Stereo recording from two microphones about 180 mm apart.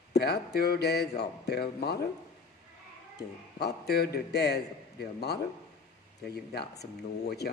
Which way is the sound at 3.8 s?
65° left (ahead or behind).